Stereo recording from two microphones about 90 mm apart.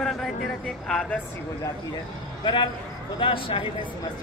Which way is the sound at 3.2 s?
70° left (ahead or behind).